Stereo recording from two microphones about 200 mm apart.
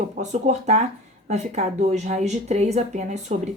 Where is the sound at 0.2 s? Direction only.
35° right (ahead or behind).